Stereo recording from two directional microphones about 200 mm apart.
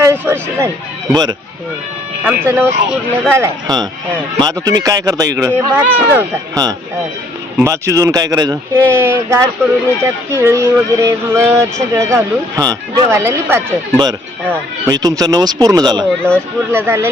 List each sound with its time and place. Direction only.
0.0 s speech: 10° right (ahead or behind)